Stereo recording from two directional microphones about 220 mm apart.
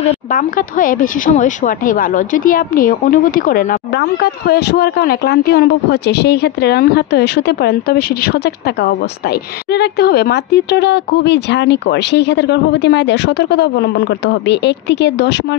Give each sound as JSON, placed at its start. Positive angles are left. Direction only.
{"t": 0.3, "sound": "speech", "side_deg": 40}
{"t": 9.7, "sound": "speech", "side_deg": 45}